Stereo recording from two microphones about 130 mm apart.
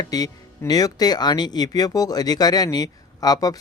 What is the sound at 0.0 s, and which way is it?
Speech, 30° left (ahead or behind).